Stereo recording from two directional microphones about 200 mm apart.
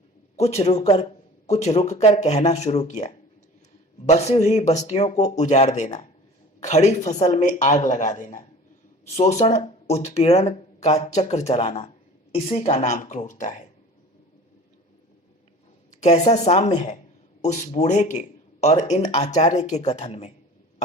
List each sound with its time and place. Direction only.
0.3 s speech: 35° left (ahead or behind)
16.0 s a woman's voice: 35° left (ahead or behind)